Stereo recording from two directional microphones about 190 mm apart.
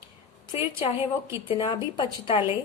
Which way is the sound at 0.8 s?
30° left (ahead or behind).